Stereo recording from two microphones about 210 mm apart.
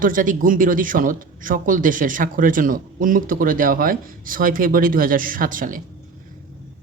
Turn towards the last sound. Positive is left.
turn(degrees=-40)  # may be behind; listen again after turning